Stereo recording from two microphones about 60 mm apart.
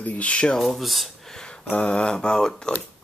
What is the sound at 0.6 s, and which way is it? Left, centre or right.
Speech, centre.